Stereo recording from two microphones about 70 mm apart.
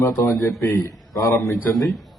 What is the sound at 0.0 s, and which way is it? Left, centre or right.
Speech, left.